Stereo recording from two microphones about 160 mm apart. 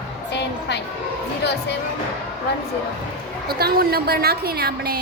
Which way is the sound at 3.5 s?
75° right (ahead or behind).